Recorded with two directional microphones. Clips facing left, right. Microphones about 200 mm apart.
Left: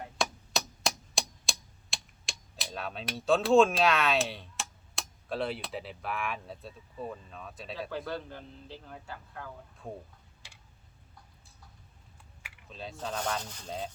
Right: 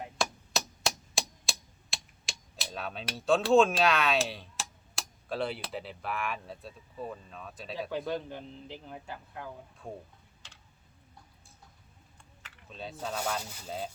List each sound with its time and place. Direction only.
0.2 s tick-tock: centre (ahead or behind)
7.8 s a man's voice: 15° right (ahead or behind)
10.4 s tick: 10° left (ahead or behind)
12.6 s a man's voice: centre (ahead or behind)